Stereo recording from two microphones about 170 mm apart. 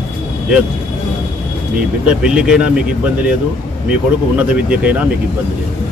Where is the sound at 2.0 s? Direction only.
5° right (ahead or behind).